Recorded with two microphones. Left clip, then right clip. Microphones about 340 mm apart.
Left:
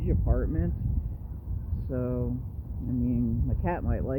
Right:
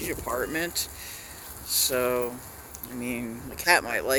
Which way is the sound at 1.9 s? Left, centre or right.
Centre.